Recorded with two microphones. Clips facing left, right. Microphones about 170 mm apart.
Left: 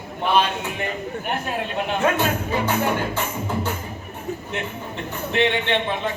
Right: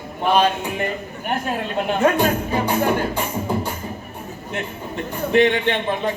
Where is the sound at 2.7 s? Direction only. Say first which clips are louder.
Right 4 dB; 15° right (ahead or behind).